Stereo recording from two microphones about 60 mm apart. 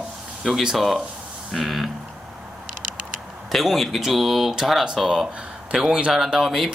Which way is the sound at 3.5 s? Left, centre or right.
Centre.